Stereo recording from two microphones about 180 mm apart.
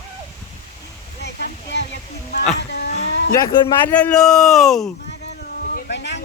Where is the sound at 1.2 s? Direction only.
70° left (ahead or behind).